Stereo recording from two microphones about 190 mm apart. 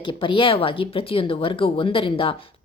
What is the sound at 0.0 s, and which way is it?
Speech, 25° left (ahead or behind).